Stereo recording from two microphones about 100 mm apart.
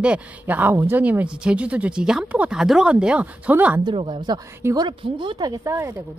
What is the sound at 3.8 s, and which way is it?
Speech, 50° right (ahead or behind).